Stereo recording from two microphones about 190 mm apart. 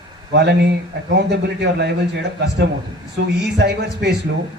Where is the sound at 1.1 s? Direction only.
60° right (ahead or behind).